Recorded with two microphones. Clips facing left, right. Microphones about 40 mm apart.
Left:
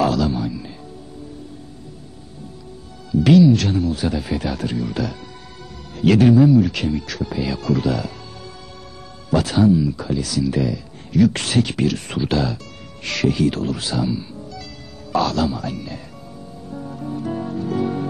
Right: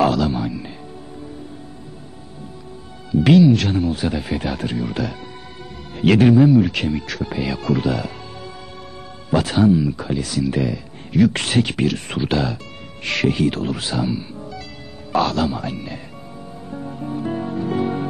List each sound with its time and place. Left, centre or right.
0.0 s music: right
3.1 s speech: right
16.7 s music: right